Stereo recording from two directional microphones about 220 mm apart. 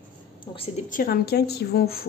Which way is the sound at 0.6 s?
35° left (ahead or behind).